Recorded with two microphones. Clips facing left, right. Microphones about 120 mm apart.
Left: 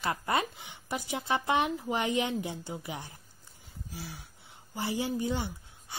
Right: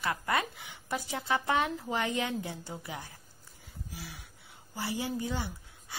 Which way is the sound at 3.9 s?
35° left (ahead or behind).